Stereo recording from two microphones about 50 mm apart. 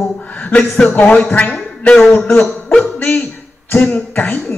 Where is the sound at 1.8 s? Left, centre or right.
Left.